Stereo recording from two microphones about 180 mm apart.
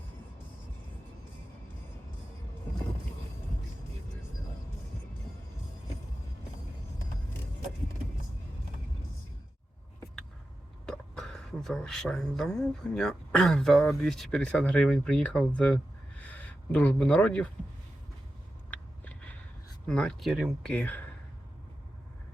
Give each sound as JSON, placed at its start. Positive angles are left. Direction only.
{"t": 10.8, "sound": "speech", "side_deg": 5}
{"t": 19.9, "sound": "speech", "side_deg": 5}